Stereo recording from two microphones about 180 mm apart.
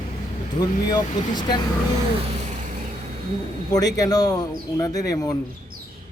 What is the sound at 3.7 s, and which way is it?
Speech, 20° left (ahead or behind).